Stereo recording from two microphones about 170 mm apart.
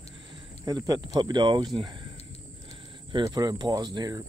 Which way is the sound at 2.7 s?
25° right (ahead or behind).